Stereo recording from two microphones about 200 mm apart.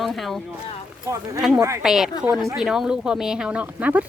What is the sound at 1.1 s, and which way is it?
Speech, 15° right (ahead or behind).